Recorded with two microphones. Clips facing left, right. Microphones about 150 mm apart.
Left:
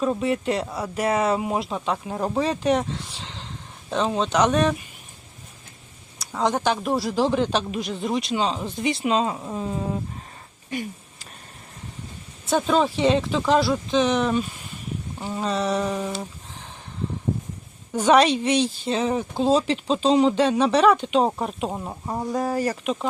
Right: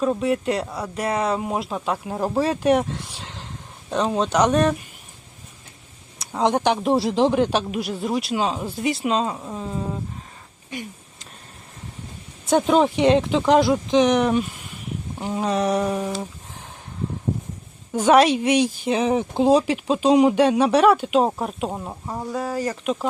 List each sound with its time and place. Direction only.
0.0 s a woman's voice: centre (ahead or behind)
6.1 s a woman's voice: 20° right (ahead or behind); by 10.0 s 5° left (ahead or behind)
12.5 s a woman's voice: 15° right (ahead or behind)
17.9 s a woman's voice: 10° right (ahead or behind)
22.0 s speech: 10° left (ahead or behind)
22.7 s speech: centre (ahead or behind)